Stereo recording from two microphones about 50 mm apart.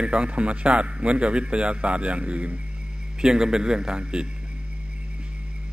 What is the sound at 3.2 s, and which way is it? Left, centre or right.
A man's voice, centre.